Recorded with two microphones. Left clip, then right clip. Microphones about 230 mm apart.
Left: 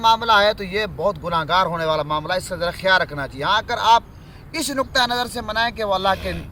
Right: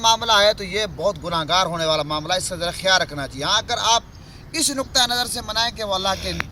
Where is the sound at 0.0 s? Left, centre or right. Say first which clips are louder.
Left 1 dB; left.